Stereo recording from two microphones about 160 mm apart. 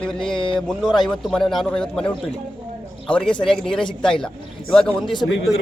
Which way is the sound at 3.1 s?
5° left (ahead or behind).